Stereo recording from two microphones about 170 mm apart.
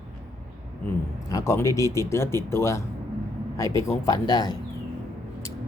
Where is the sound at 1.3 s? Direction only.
15° left (ahead or behind).